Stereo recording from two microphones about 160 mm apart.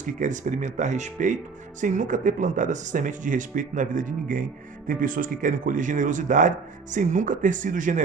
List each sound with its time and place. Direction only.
0.0 s speech: 50° right (ahead or behind)